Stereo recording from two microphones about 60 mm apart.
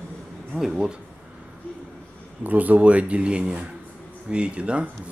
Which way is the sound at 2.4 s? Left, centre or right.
Right.